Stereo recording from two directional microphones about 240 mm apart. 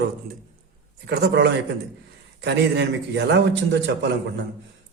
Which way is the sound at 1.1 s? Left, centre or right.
Right.